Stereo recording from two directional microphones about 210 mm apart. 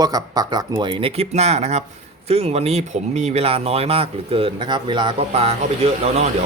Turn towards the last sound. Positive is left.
turn(degrees=-30)  # may be behind; listen again after turning